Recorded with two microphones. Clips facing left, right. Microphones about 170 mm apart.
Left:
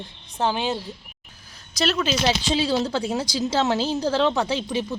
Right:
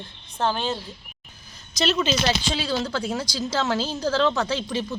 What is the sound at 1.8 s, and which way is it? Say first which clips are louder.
Speech: even; centre (ahead or behind).